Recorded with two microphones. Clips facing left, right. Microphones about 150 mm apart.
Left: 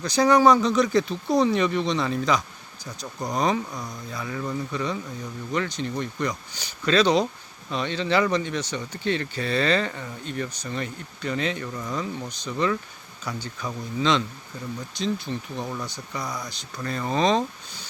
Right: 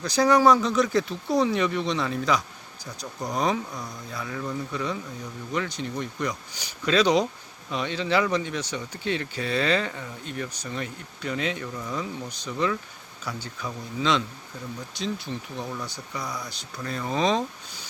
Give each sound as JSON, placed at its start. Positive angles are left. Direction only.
{"t": 0.0, "sound": "speech", "side_deg": -5}
{"t": 3.7, "sound": "speech", "side_deg": 10}
{"t": 4.1, "sound": "speech", "side_deg": 0}